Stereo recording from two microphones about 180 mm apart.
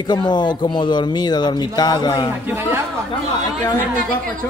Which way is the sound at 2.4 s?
10° right (ahead or behind).